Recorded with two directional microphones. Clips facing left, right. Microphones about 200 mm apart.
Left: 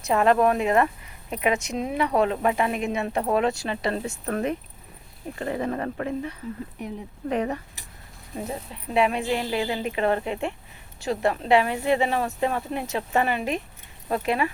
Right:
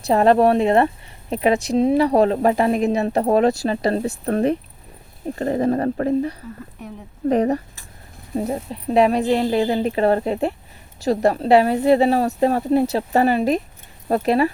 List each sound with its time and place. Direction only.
0.0 s speech: 35° right (ahead or behind)